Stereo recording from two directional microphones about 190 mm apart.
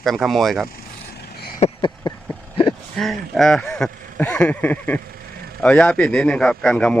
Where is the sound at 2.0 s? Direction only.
25° left (ahead or behind).